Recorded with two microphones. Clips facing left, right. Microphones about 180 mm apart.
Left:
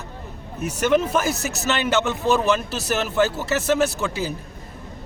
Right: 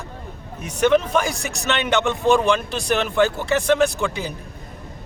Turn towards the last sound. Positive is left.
turn(degrees=5)  # may be behind; listen again after turning